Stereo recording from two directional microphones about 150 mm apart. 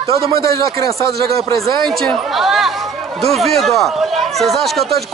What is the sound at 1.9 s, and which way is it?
Speech, centre (ahead or behind).